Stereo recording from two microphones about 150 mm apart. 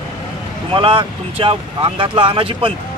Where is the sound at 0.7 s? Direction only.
35° right (ahead or behind).